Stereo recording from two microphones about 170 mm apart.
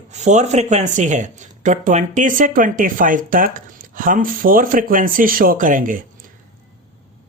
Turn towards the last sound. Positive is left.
turn(degrees=-55)  # may be behind; listen again after turning